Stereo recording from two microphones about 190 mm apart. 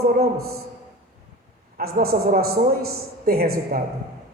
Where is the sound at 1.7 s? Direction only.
50° right (ahead or behind).